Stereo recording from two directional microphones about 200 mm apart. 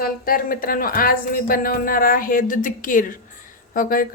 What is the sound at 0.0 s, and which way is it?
Speech, 45° left (ahead or behind).